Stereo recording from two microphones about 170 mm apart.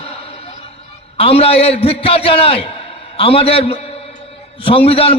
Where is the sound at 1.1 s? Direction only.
35° left (ahead or behind).